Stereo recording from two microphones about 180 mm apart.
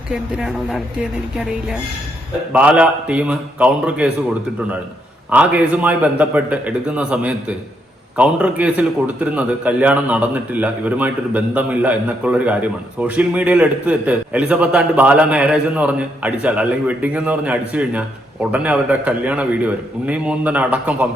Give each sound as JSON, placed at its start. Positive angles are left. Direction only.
{"t": 0.1, "sound": "speech", "side_deg": -5}
{"t": 2.5, "sound": "a man's voice", "side_deg": -5}
{"t": 5.3, "sound": "a man's voice", "side_deg": -10}